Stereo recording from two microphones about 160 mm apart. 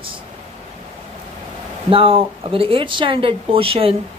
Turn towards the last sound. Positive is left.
turn(degrees=-35)  # may be behind; listen again after turning